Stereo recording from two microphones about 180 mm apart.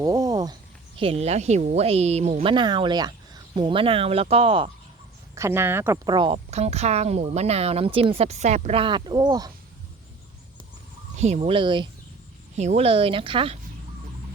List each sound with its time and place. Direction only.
0.0 s a sound: 20° right (ahead or behind)
0.9 s speech: 35° right (ahead or behind)
5.3 s speech: 15° right (ahead or behind)
11.2 s speech: 35° right (ahead or behind)
12.5 s speech: 35° right (ahead or behind)